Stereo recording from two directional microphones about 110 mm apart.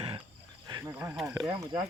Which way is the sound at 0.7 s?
40° right (ahead or behind).